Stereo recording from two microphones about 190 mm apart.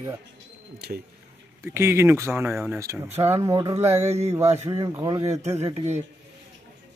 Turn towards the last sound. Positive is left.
turn(degrees=-35)  # may be behind; listen again after turning